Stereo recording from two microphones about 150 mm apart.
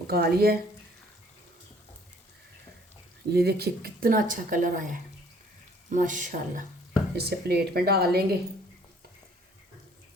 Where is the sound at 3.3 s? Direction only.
90° right; by 4.8 s 60° right (ahead or behind).